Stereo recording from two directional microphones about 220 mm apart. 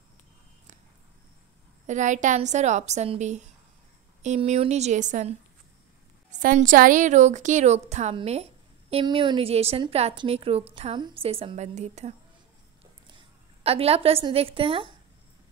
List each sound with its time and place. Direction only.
1.9 s a woman's voice: 35° right (ahead or behind)
6.3 s a woman's voice: 35° right (ahead or behind)
13.7 s a woman's voice: 25° right (ahead or behind)